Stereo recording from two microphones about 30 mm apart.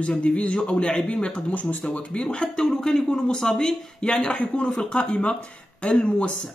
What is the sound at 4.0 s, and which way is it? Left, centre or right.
Speech, left.